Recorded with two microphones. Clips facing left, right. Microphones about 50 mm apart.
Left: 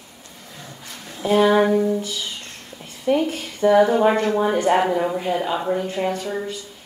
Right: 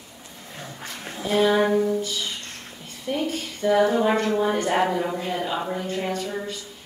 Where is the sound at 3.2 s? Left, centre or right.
Left.